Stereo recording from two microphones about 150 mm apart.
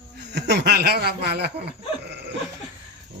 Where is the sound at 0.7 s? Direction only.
90° right.